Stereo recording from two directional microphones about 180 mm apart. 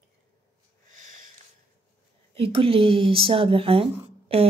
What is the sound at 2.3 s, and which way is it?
Speech, 30° right (ahead or behind).